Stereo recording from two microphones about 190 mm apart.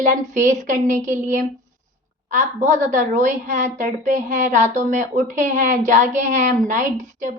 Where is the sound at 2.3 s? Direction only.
40° right (ahead or behind).